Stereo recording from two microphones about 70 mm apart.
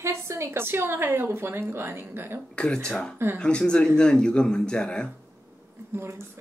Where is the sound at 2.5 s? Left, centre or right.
Centre.